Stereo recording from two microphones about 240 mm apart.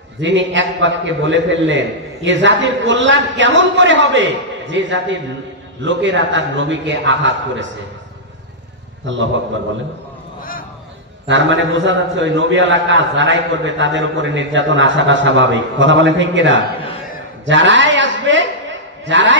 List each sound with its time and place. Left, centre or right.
0.2 s a man's voice: right
9.0 s a man's voice: right
11.2 s a man's voice: right
17.5 s a sound: right